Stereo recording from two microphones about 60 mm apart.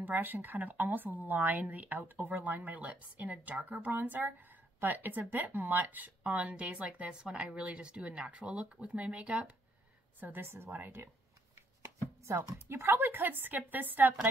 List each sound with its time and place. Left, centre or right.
0.0 s speech: right
10.2 s a woman's voice: right
11.8 s chopping: right
12.4 s a woman's voice: right